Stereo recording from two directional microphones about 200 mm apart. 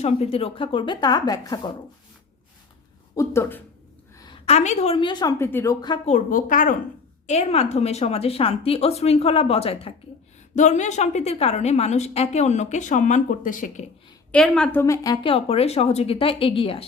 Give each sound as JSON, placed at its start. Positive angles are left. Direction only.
{"t": 0.0, "sound": "a woman's voice", "side_deg": 30}
{"t": 3.2, "sound": "speech", "side_deg": 15}
{"t": 4.2, "sound": "a woman's voice", "side_deg": 25}
{"t": 6.1, "sound": "a woman's voice", "side_deg": 40}
{"t": 7.3, "sound": "a woman's voice", "side_deg": 30}
{"t": 14.3, "sound": "a woman's voice", "side_deg": 5}